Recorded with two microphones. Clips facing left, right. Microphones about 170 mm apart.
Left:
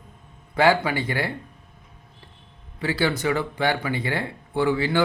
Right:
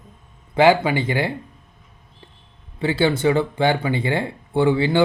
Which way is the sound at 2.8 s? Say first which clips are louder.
Right 5 dB; 25° right (ahead or behind).